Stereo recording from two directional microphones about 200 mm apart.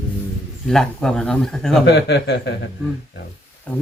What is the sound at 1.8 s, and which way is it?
Speech, 60° left (ahead or behind).